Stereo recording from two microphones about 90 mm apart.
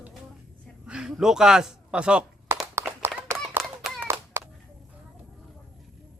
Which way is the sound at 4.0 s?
20° right (ahead or behind).